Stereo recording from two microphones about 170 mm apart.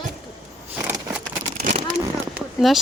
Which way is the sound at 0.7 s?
10° right (ahead or behind).